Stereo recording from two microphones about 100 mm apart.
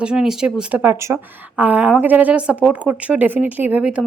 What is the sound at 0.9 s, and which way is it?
Speech, 25° right (ahead or behind).